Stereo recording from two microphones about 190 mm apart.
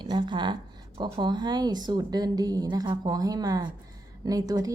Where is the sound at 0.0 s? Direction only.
25° right (ahead or behind).